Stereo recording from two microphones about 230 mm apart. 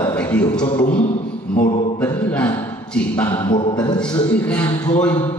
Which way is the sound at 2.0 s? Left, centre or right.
Centre.